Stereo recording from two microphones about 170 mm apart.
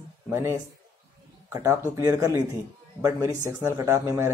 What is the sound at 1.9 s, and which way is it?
Speech, 15° right (ahead or behind).